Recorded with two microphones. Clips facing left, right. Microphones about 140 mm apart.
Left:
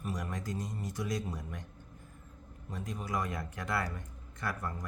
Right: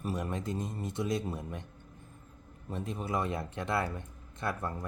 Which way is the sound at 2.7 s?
25° right (ahead or behind).